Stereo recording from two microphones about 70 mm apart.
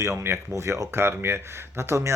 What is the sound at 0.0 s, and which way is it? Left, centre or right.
Speech, right.